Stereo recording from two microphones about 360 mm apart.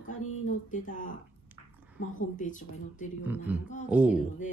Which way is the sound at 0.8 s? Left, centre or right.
Left.